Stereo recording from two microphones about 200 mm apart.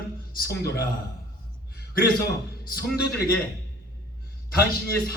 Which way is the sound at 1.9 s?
50° left (ahead or behind).